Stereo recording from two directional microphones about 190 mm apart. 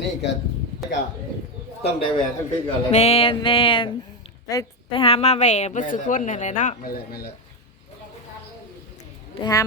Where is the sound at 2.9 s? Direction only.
35° left (ahead or behind).